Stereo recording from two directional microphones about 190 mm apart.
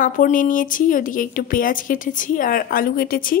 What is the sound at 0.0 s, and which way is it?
A woman's voice, 45° left (ahead or behind).